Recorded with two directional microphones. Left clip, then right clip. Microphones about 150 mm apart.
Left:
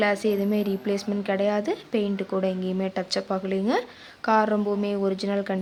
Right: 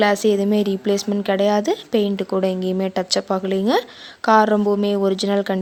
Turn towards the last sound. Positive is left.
turn(degrees=-50)  # may be behind; listen again after turning